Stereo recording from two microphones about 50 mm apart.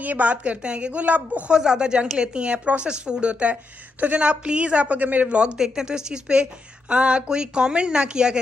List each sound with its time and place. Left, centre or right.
0.0 s a woman's voice: right
1.5 s a woman's voice: centre
5.6 s a woman's voice: centre